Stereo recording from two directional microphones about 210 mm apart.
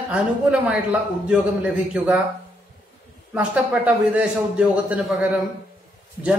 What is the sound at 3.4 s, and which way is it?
A man's voice, 5° right (ahead or behind).